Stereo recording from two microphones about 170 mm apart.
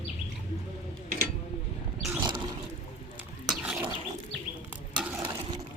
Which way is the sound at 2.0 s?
20° right (ahead or behind).